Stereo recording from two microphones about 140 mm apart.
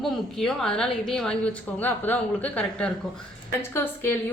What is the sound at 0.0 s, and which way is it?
A woman's voice, 5° left (ahead or behind).